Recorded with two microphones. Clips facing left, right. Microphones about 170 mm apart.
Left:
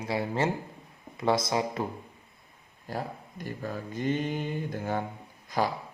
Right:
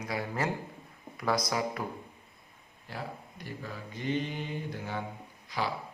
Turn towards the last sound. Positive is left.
turn(degrees=45)  # may be behind; listen again after turning